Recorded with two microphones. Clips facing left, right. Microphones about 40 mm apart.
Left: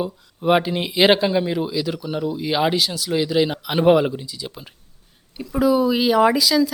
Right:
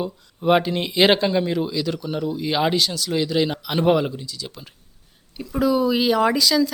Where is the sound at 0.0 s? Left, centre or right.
Centre.